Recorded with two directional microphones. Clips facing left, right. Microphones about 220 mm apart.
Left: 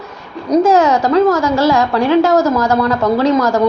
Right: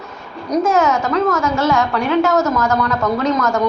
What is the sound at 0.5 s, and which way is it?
A woman's voice, 30° left (ahead or behind).